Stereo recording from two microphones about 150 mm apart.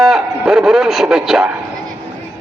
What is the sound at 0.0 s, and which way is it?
A man's voice, 5° right (ahead or behind).